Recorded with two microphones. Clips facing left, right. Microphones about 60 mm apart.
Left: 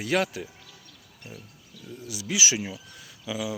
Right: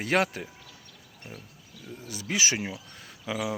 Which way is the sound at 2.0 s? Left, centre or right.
Right.